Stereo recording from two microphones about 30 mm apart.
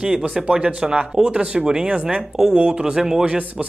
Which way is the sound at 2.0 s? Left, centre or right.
Right.